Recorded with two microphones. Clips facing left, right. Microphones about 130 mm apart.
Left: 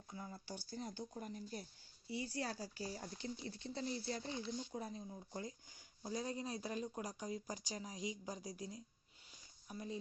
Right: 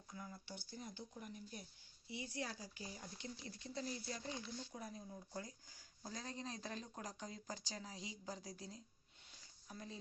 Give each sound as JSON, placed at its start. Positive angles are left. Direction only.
{"t": 0.1, "sound": "speech", "side_deg": 30}
{"t": 2.1, "sound": "speech", "side_deg": -20}
{"t": 2.6, "sound": "speech", "side_deg": 35}